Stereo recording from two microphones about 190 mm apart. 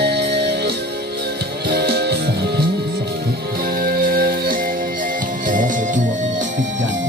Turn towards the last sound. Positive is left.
turn(degrees=-45)  # may be behind; listen again after turning